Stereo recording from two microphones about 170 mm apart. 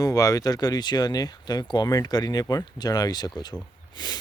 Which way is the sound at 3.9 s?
25° left (ahead or behind).